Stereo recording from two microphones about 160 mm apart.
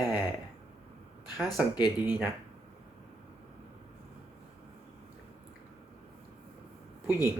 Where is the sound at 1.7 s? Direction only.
25° left (ahead or behind).